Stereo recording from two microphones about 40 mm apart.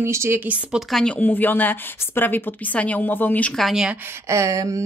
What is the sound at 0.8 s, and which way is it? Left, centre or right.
Speech, right.